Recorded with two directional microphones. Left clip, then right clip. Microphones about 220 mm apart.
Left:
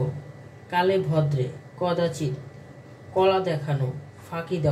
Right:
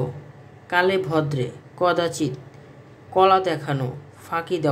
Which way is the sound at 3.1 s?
50° right (ahead or behind).